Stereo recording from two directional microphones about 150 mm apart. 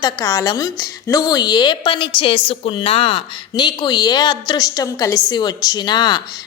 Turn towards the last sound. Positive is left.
turn(degrees=30)  # may be behind; listen again after turning